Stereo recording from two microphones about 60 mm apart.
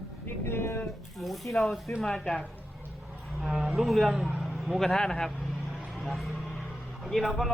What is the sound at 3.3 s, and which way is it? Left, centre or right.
A man's voice, centre.